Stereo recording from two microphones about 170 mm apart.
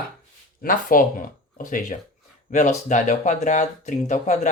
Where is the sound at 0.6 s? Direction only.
55° left (ahead or behind).